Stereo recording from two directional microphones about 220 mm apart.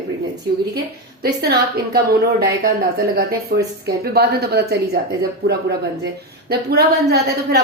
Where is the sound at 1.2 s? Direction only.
45° right (ahead or behind).